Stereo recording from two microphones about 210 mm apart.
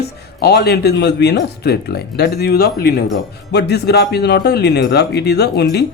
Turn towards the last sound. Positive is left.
turn(degrees=50)  # may be behind; listen again after turning